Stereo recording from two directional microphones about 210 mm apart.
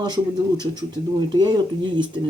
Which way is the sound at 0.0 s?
20° right (ahead or behind).